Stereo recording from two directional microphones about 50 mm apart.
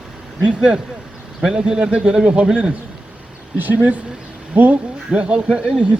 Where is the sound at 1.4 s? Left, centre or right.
Centre.